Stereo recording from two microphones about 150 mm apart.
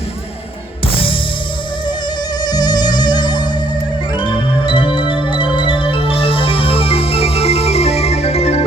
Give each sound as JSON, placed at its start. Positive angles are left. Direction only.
{"t": 2.4, "sound": "music", "side_deg": 25}